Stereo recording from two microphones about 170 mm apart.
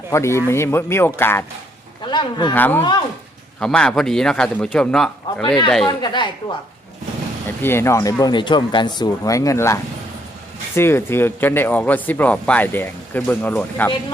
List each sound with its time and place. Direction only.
0.1 s speech: 15° left (ahead or behind)
2.0 s speech: 25° left (ahead or behind)
2.6 s a man's voice: 10° left (ahead or behind)
5.9 s speech: 25° left (ahead or behind)
7.6 s speech: 15° left (ahead or behind)